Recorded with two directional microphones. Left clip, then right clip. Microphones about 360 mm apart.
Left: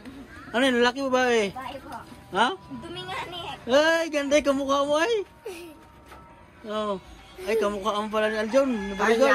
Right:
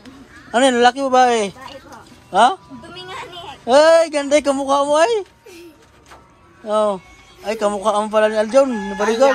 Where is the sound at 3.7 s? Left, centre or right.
Centre.